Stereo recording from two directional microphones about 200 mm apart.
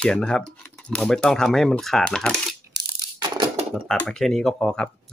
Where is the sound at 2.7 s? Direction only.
20° right (ahead or behind).